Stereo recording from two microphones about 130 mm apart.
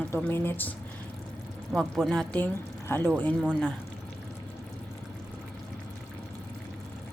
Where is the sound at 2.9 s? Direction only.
15° left (ahead or behind).